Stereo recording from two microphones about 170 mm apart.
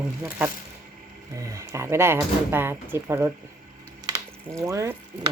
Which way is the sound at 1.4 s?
20° right (ahead or behind).